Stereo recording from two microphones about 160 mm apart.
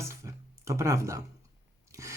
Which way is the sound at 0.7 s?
20° right (ahead or behind).